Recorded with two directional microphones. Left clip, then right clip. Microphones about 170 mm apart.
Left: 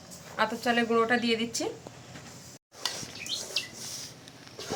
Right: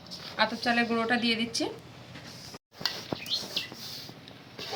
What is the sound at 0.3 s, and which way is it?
Speech, 15° left (ahead or behind).